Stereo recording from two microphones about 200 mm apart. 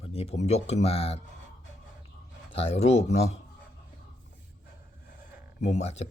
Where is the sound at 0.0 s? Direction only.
30° left (ahead or behind).